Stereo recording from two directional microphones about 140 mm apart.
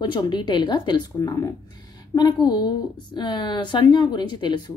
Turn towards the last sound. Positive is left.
turn(degrees=35)  # may be behind; listen again after turning